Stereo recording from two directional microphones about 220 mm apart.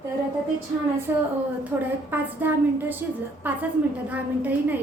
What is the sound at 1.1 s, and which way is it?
A woman's voice, 10° right (ahead or behind).